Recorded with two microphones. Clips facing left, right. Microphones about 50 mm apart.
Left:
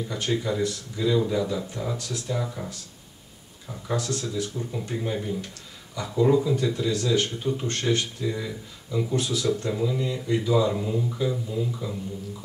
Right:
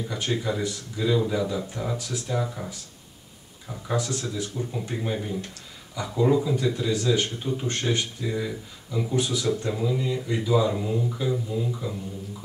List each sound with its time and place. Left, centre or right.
0.3 s speech: centre
6.7 s speech: centre